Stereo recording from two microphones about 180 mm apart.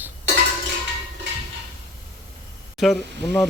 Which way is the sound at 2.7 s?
Centre (ahead or behind).